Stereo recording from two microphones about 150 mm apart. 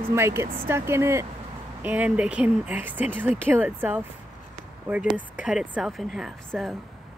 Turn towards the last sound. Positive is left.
turn(degrees=0)  # may be behind; listen again after turning